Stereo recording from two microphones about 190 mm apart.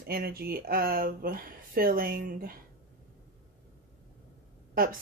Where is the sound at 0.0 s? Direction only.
55° right (ahead or behind).